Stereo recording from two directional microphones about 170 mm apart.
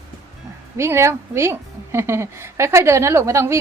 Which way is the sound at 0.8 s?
15° right (ahead or behind).